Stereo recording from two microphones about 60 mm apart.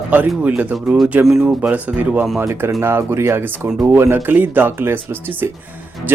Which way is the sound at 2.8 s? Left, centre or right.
Right.